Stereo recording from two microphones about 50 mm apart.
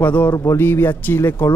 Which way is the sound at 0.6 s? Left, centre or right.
Left.